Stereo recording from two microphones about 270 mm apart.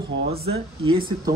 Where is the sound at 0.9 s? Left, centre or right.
Centre.